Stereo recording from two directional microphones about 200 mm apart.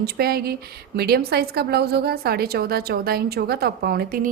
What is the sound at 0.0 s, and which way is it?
A woman's voice, 50° right (ahead or behind).